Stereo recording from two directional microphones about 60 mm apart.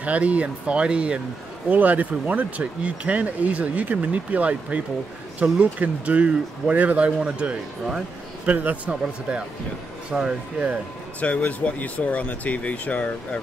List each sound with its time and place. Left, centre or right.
0.0 s speech: right
1.7 s speech: right
10.1 s speech: centre
11.1 s speech: left